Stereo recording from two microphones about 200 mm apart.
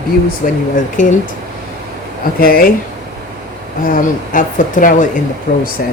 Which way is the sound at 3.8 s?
45° left (ahead or behind).